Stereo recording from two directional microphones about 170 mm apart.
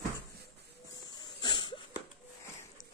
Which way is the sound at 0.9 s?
25° left (ahead or behind).